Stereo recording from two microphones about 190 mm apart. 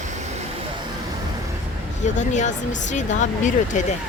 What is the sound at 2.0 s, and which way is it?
Speech, 40° left (ahead or behind).